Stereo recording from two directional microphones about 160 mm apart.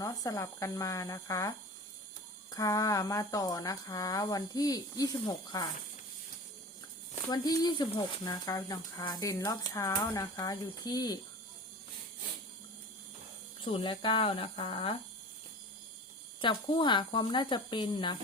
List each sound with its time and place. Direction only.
0.0 s speech: 20° left (ahead or behind)
7.3 s speech: 25° left (ahead or behind)
13.6 s speech: 35° left (ahead or behind)
16.4 s speech: 30° left (ahead or behind)